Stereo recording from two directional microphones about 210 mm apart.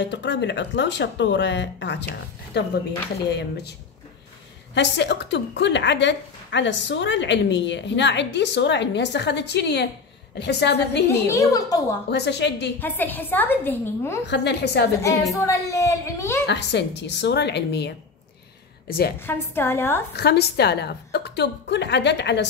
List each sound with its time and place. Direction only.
0.0 s a woman's voice: 55° left (ahead or behind)
4.7 s a woman's voice: 55° left (ahead or behind)
11.1 s a woman's voice: 15° left (ahead or behind)
12.1 s a woman's voice: 55° left (ahead or behind)
12.7 s a woman's voice: 10° left (ahead or behind)
14.3 s a woman's voice: 55° left (ahead or behind)
15.3 s a woman's voice: 15° left (ahead or behind)
16.4 s a woman's voice: 55° left (ahead or behind)
19.1 s a woman's voice: 10° left (ahead or behind)
20.2 s a woman's voice: 50° left (ahead or behind)